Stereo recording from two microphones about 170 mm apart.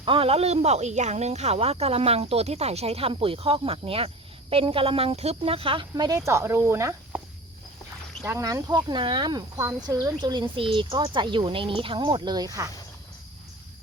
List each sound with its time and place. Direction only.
0.0 s speech: 30° right (ahead or behind)
5.9 s speech: 20° right (ahead or behind)
8.2 s speech: 15° right (ahead or behind)